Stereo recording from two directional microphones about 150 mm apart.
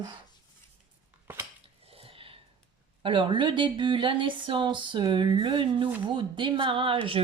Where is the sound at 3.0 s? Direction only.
35° right (ahead or behind).